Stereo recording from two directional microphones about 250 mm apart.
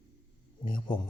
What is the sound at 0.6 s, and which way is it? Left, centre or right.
Speech, centre.